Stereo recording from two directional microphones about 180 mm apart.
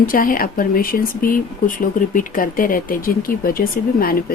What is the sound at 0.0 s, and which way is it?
Speech, 50° left (ahead or behind).